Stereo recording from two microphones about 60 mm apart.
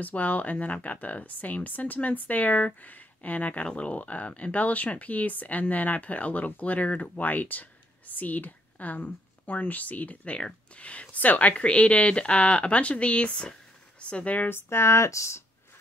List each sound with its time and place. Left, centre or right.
0.0 s speech: left
14.5 s speech: left